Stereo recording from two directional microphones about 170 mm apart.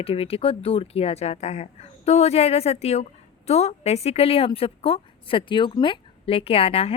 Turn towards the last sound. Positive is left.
turn(degrees=35)  # may be behind; listen again after turning